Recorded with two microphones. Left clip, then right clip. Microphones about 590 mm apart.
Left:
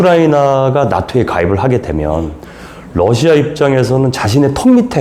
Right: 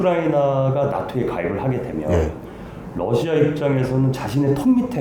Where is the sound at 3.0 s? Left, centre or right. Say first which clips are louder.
Left 9 dB; left.